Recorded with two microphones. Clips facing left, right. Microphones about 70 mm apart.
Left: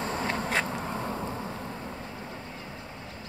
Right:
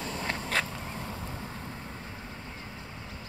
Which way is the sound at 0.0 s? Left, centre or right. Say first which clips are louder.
Left 4 dB; left.